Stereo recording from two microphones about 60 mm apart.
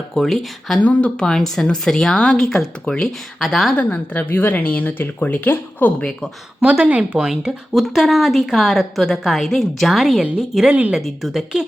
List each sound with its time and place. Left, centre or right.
0.2 s speech: centre
0.8 s a woman's voice: left
3.4 s speech: centre
3.8 s speech: left
6.6 s speech: right
7.2 s a woman's voice: centre